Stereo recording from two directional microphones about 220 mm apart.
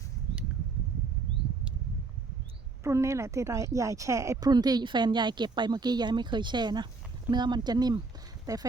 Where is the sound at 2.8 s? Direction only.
10° right (ahead or behind).